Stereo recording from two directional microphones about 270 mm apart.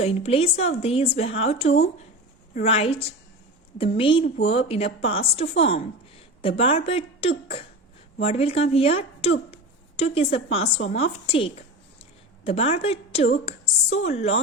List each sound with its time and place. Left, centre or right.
0.0 s a woman's voice: left